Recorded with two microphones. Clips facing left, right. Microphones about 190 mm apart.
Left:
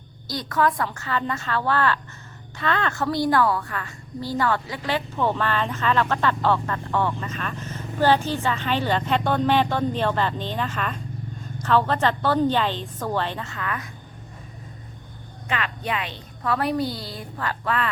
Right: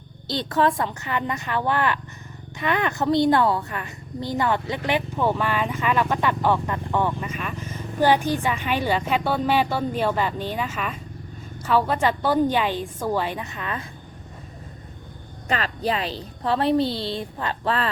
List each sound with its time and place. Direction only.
0.3 s a woman's voice: 25° right (ahead or behind)
15.4 s a woman's voice: 35° right (ahead or behind)